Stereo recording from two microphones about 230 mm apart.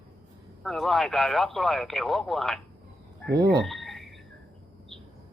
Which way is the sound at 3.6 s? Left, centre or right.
Centre.